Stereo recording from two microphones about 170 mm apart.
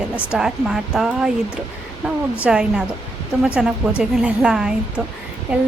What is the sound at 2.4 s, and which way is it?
A woman's voice, 5° right (ahead or behind).